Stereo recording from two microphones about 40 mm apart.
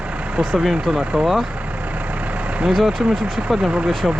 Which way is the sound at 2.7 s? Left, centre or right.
Centre.